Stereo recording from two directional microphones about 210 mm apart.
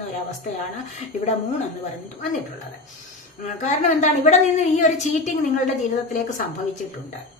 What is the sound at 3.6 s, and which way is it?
A woman's voice, 35° left (ahead or behind).